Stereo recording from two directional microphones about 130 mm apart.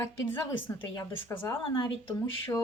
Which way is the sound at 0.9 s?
20° left (ahead or behind).